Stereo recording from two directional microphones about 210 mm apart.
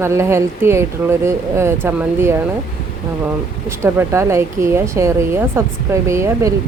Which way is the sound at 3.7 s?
10° right (ahead or behind).